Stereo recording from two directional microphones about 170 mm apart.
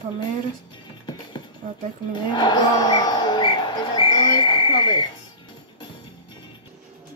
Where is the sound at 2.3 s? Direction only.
25° left (ahead or behind).